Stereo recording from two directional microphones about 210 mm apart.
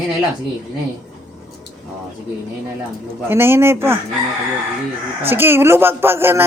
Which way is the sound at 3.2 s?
10° right (ahead or behind).